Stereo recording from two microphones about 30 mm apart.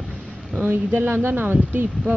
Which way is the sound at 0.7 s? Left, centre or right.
Right.